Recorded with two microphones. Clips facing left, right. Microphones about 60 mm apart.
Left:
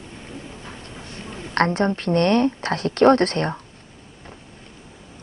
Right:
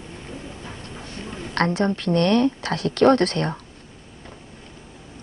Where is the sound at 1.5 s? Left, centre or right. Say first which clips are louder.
Left 2 dB; left.